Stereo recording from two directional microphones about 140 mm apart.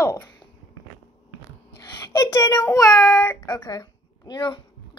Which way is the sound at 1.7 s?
20° left (ahead or behind).